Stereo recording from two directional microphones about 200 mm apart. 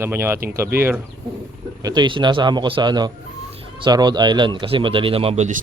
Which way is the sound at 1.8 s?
20° right (ahead or behind).